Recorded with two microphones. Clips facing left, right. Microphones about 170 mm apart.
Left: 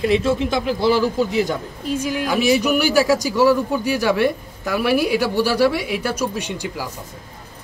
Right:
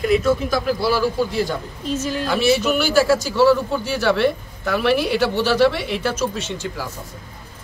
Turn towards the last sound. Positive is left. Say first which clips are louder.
# left 1 dB
turn(degrees=15)  # may be behind; listen again after turning